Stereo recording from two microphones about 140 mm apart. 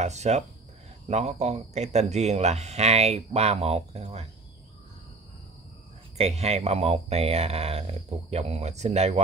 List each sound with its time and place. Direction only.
0.0 s speech: 55° right (ahead or behind)
6.1 s speech: 50° right (ahead or behind)